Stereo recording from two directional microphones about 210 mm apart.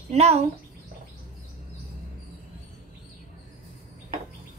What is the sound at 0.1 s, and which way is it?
Speech, 30° right (ahead or behind).